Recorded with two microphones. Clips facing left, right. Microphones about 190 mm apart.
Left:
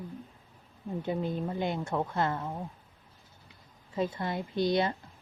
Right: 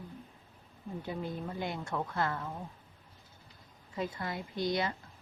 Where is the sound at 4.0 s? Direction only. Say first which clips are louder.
Left 5 dB; 25° left (ahead or behind).